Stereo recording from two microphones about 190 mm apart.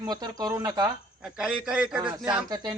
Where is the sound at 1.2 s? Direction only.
5° right (ahead or behind).